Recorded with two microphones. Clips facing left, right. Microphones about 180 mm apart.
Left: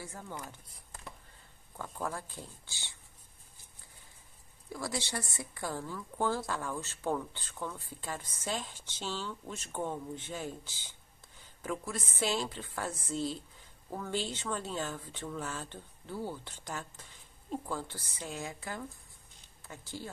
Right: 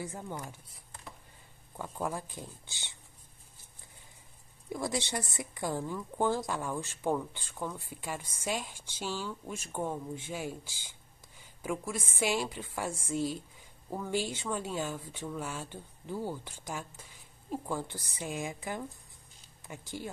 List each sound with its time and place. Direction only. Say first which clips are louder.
0.0 s speech: right 4 dB; 20° right (ahead or behind)
1.8 s speech: right 2 dB; 15° right (ahead or behind)
4.7 s speech: right 3 dB; 20° right (ahead or behind)